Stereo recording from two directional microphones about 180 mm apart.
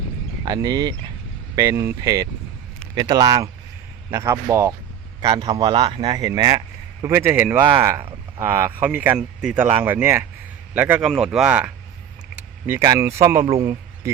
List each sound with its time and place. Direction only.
0.4 s speech: 20° right (ahead or behind)